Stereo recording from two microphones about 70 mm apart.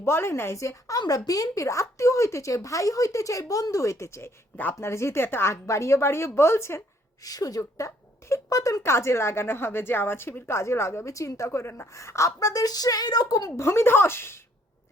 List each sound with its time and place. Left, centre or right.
0.0 s speech: left
0.9 s a woman's voice: left
1.3 s speech: left
4.5 s speech: left
4.9 s speech: left
7.3 s a woman's voice: left
7.8 s speech: left
8.8 s speech: left
10.6 s a woman's voice: left
13.6 s speech: left